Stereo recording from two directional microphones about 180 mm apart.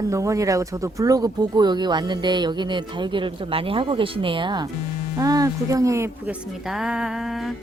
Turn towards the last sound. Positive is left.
turn(degrees=0)  # may be behind; listen again after turning